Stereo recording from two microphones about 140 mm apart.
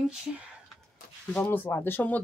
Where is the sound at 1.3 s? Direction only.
10° left (ahead or behind).